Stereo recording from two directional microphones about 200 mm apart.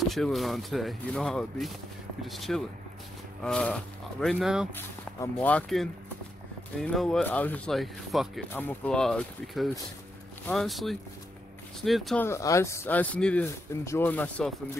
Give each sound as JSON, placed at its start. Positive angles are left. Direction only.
{"t": 0.1, "sound": "speech", "side_deg": 0}
{"t": 4.7, "sound": "speech", "side_deg": 10}
{"t": 12.3, "sound": "speech", "side_deg": 15}